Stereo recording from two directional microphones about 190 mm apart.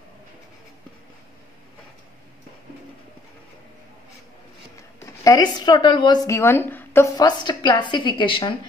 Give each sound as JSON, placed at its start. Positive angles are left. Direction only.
{"t": 4.7, "sound": "speech", "side_deg": 15}
{"t": 7.2, "sound": "a woman's voice", "side_deg": 25}